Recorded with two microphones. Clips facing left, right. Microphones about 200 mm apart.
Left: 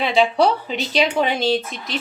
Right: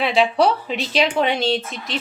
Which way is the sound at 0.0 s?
Centre (ahead or behind).